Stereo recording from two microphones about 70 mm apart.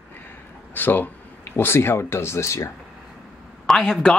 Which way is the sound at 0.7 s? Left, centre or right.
Left.